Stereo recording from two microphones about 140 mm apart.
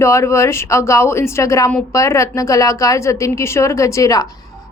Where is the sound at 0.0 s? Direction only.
20° left (ahead or behind).